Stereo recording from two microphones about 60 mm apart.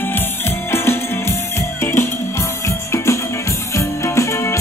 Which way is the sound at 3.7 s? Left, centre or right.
Left.